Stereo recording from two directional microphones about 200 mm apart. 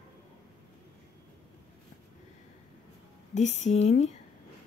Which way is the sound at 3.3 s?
35° left (ahead or behind).